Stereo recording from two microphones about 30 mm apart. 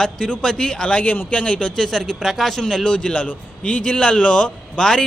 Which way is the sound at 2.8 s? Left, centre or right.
Left.